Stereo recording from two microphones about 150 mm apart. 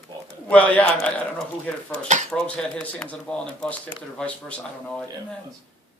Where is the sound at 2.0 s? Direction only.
55° right (ahead or behind).